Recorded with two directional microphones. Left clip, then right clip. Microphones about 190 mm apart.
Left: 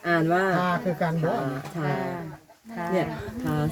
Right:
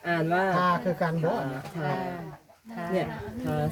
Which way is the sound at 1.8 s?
20° left (ahead or behind).